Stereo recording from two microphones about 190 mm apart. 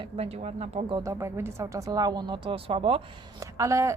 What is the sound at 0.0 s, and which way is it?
A woman's voice, 30° right (ahead or behind).